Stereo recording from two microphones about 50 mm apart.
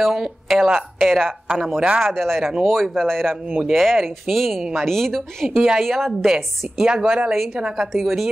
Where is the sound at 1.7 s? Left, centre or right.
Right.